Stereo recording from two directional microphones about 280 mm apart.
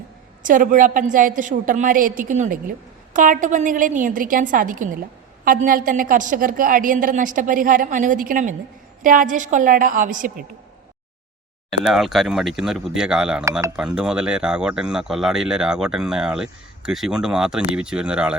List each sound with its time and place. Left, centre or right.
0.4 s a woman's voice: right
11.8 s speech: centre